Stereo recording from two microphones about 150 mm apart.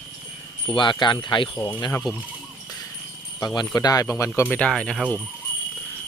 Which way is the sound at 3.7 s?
25° left (ahead or behind).